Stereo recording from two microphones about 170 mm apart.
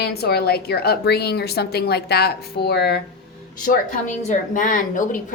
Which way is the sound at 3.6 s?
50° left (ahead or behind).